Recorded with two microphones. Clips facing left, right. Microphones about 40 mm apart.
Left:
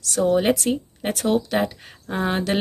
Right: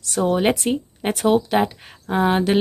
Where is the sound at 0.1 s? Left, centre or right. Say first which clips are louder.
Even; centre.